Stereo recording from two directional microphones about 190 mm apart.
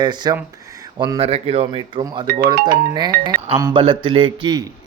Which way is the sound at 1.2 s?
30° right (ahead or behind).